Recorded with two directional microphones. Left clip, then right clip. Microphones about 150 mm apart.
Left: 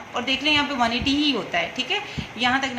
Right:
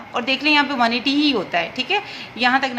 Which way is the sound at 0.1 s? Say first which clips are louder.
Right 4 dB; 45° right (ahead or behind).